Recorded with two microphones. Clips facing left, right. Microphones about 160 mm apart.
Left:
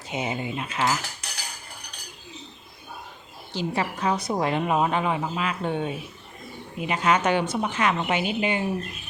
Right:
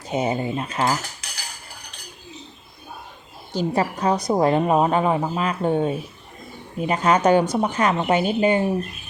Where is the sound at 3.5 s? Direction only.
40° right (ahead or behind).